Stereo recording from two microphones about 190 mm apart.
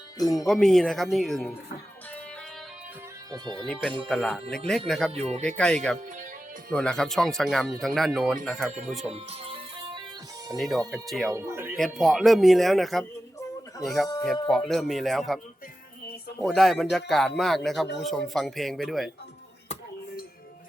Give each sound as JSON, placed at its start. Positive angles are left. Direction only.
{"t": 0.2, "sound": "speech", "side_deg": 20}
{"t": 0.4, "sound": "speech", "side_deg": 5}
{"t": 3.3, "sound": "speech", "side_deg": -20}
{"t": 3.7, "sound": "speech", "side_deg": 5}
{"t": 5.1, "sound": "speech", "side_deg": -30}
{"t": 5.4, "sound": "speech", "side_deg": 5}
{"t": 9.0, "sound": "music", "side_deg": -30}
{"t": 10.9, "sound": "speech", "side_deg": 0}
{"t": 11.3, "sound": "speech", "side_deg": -15}
{"t": 11.8, "sound": "speech", "side_deg": 0}
{"t": 16.5, "sound": "speech", "side_deg": 0}